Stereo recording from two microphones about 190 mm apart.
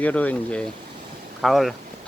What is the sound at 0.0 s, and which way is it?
Speech, 10° left (ahead or behind).